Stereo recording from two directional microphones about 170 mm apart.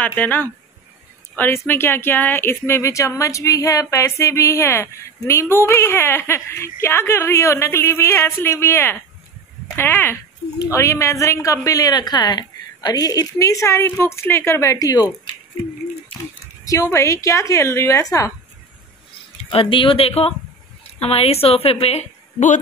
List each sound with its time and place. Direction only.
0.0 s a woman's voice: 10° left (ahead or behind)
16.6 s speech: 20° left (ahead or behind)
19.5 s a woman's voice: 30° left (ahead or behind)